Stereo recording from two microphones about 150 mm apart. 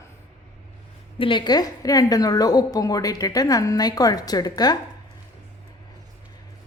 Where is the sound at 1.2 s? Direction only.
35° left (ahead or behind).